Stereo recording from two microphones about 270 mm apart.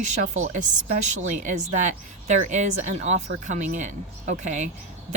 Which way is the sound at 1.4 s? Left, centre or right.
Right.